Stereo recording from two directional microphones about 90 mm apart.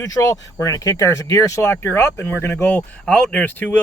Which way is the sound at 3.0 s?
10° left (ahead or behind).